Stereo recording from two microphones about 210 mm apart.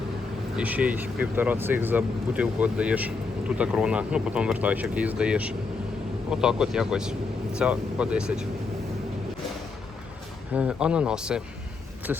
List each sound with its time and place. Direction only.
0.5 s speech: 5° right (ahead or behind)
10.5 s speech: 5° right (ahead or behind)